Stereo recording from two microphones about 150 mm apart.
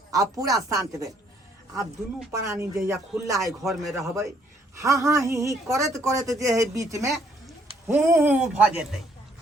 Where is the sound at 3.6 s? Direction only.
Centre (ahead or behind).